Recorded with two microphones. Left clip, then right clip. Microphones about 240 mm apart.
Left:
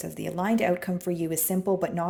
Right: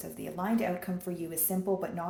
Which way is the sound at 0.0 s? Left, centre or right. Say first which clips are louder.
Left 6 dB; left.